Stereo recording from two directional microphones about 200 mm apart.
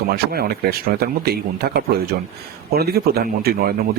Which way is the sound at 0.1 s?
50° right (ahead or behind).